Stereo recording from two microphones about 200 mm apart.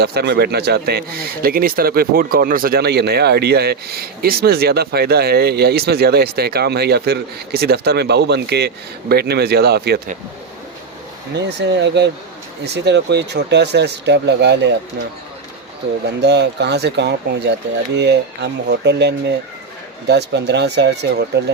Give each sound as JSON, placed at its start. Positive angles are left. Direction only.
{"t": 0.0, "sound": "speech", "side_deg": -55}
{"t": 11.3, "sound": "speech", "side_deg": -60}
{"t": 16.0, "sound": "speech", "side_deg": -55}